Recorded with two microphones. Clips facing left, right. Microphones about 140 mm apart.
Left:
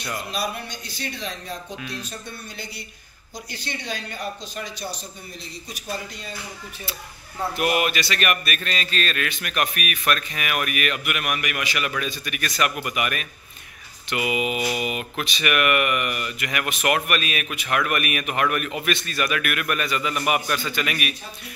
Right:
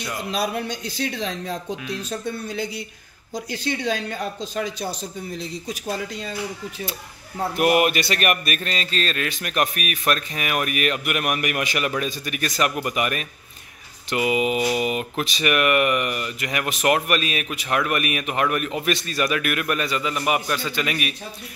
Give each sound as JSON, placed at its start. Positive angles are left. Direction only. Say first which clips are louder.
{"t": 1.0, "sound": "speech", "louder": "right 6 dB", "side_deg": -90}
{"t": 6.9, "sound": "speech", "louder": "right 3 dB", "side_deg": -45}